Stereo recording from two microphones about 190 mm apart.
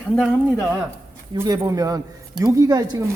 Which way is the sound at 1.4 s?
20° right (ahead or behind).